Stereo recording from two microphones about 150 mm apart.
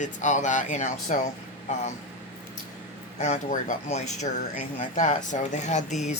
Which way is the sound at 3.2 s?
60° left (ahead or behind).